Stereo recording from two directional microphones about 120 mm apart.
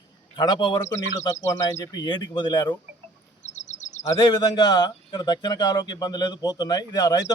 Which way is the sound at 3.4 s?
80° left.